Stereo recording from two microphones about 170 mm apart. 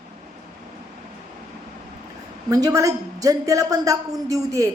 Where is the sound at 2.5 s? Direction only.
20° right (ahead or behind).